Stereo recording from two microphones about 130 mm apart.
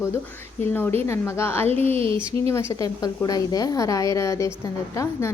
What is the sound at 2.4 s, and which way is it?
A woman's voice, 25° left (ahead or behind).